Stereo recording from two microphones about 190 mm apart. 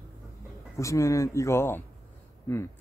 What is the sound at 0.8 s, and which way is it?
Speech, 15° left (ahead or behind).